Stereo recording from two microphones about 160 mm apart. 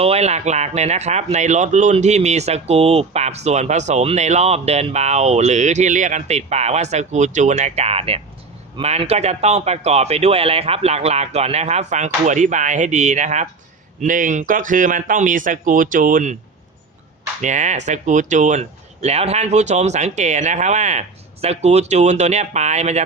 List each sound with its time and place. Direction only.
0.0 s speech: 40° right (ahead or behind)
17.4 s speech: 50° right (ahead or behind)